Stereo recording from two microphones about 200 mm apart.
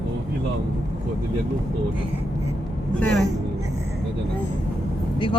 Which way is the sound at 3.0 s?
5° left (ahead or behind).